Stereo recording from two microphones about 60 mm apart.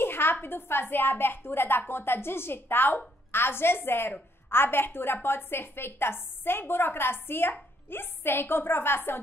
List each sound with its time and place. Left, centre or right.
0.0 s a woman's voice: left